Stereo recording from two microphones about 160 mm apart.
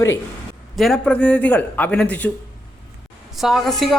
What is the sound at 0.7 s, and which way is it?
A woman's voice, centre (ahead or behind).